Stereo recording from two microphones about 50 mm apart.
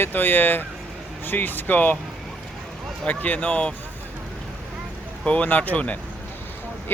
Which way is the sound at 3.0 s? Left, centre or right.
Left.